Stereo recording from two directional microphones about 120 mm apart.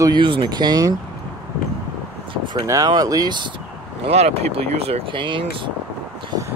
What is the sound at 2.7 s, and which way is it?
Speech, 30° right (ahead or behind).